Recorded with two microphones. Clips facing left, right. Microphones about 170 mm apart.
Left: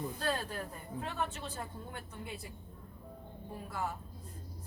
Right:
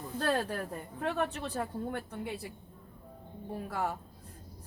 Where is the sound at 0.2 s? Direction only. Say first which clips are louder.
Right 8 dB; 65° right (ahead or behind).